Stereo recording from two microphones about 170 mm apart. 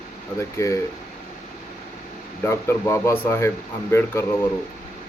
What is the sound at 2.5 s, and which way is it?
Speech, 15° left (ahead or behind).